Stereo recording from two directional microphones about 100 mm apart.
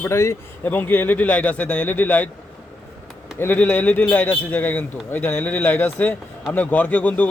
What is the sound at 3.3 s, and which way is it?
A man's voice, 20° left (ahead or behind).